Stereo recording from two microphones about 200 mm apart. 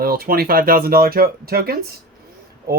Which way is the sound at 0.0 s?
50° right (ahead or behind).